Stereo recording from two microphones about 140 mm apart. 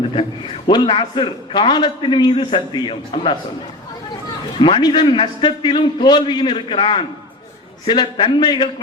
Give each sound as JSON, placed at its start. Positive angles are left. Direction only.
{"t": 0.1, "sound": "a man's voice", "side_deg": 35}
{"t": 4.6, "sound": "a man's voice", "side_deg": 35}